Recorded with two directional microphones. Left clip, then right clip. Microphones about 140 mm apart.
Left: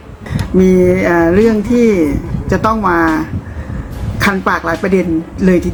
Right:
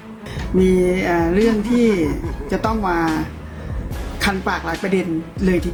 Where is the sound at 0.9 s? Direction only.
15° right (ahead or behind).